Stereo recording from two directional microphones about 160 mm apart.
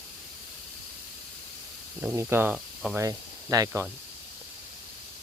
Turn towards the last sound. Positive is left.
turn(degrees=-20)  # may be behind; listen again after turning